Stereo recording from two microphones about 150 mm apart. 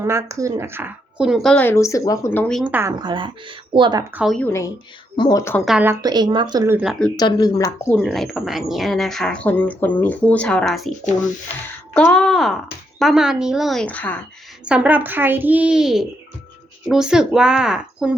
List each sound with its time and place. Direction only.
0.0 s speech: 20° right (ahead or behind); by 2.5 s 15° left (ahead or behind)
2.6 s a child's voice: 10° right (ahead or behind)
3.0 s speech: 30° right (ahead or behind)
4.1 s a child's voice: 5° right (ahead or behind)
4.4 s a woman's voice: 15° left (ahead or behind)
5.1 s speech: 25° left (ahead or behind)
6.0 s speech: 25° right (ahead or behind)
7.2 s speech: 25° left (ahead or behind)
7.9 s speech: centre (ahead or behind)
11.9 s speech: 5° left (ahead or behind)
14.6 s a child's voice: 10° right (ahead or behind)